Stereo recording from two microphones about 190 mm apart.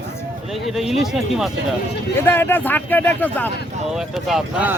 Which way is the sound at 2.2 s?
10° left (ahead or behind).